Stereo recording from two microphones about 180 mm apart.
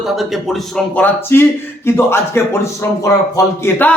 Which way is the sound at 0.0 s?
Centre (ahead or behind).